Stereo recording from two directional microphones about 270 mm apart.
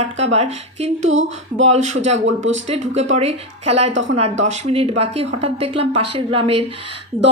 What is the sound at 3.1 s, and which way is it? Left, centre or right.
Speech, right.